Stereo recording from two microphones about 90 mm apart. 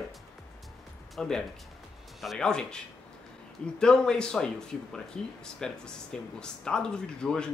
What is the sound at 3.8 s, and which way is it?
Speech, 10° left (ahead or behind).